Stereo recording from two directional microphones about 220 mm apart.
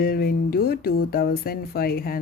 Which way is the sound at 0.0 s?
45° left (ahead or behind).